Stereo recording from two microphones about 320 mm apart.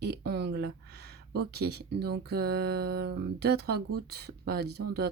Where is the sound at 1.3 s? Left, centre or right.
Right.